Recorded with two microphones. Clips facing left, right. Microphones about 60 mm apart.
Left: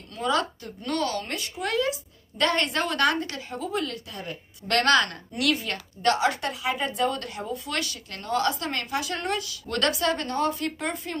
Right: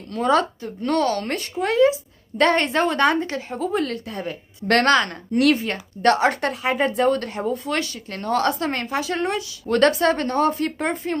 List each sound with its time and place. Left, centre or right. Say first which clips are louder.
0.3 s a woman's voice: right 6 dB; right
1.2 s a woman's voice: right 6 dB; right
1.6 s a woman's voice: right 9 dB; right
4.6 s a woman's voice: right 4 dB; right
6.0 s a woman's voice: right 5 dB; right
8.3 s a woman's voice: right 4 dB; right
8.6 s a woman's voice: right 5 dB; right